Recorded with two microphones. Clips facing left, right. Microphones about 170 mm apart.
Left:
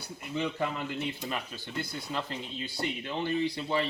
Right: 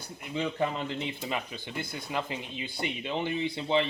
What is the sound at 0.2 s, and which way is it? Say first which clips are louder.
Speech: right 2 dB; 15° right (ahead or behind).